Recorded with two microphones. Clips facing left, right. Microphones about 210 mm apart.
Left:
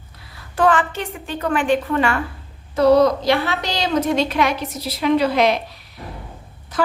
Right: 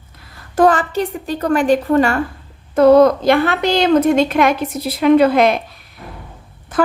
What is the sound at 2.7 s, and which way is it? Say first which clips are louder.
Speech: right 5 dB; 50° right (ahead or behind).